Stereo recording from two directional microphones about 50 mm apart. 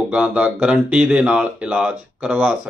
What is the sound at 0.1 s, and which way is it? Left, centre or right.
A man's voice, right.